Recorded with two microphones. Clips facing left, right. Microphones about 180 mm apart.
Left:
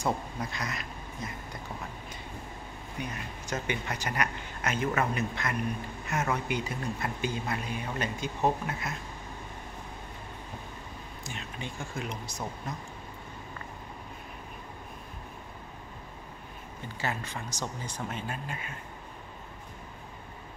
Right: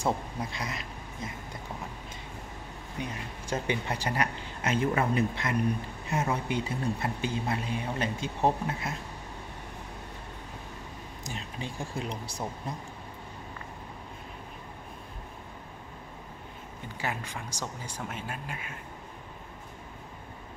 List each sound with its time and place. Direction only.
0.0 s speech: 25° right (ahead or behind)
3.6 s speech: 30° right (ahead or behind)
11.2 s speech: 35° right (ahead or behind)
17.0 s speech: 10° right (ahead or behind)